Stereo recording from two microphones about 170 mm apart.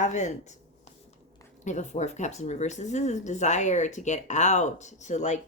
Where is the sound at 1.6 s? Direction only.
45° left (ahead or behind).